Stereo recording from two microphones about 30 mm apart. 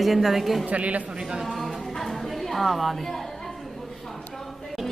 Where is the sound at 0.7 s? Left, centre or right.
Right.